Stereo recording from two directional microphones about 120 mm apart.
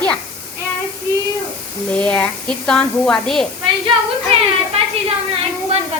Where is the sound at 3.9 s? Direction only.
45° right (ahead or behind).